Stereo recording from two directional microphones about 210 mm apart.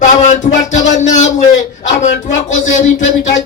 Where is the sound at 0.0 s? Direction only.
35° left (ahead or behind).